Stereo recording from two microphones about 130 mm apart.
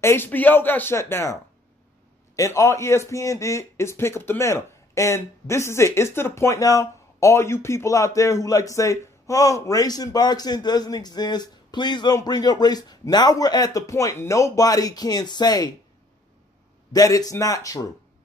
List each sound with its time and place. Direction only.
0.0 s a man's voice: 15° left (ahead or behind)
16.9 s a man's voice: 30° left (ahead or behind)